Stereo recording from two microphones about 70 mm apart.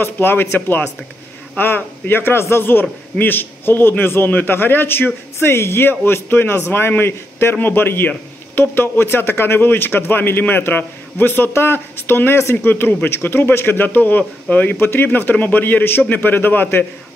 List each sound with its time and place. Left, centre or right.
0.0 s a man's voice: left